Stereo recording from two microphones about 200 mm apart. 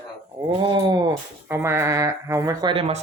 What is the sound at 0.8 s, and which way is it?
Speech, 20° right (ahead or behind).